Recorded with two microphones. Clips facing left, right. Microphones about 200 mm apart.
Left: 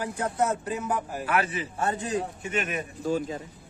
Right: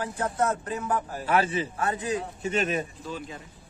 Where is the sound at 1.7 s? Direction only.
25° left (ahead or behind).